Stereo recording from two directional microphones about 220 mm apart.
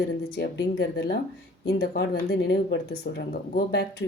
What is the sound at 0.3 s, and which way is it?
Speech, 55° left (ahead or behind).